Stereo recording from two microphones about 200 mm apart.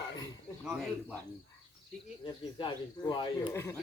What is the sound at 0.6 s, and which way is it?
Speech, centre (ahead or behind).